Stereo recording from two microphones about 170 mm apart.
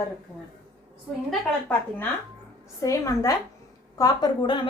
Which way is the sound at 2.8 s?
20° left (ahead or behind).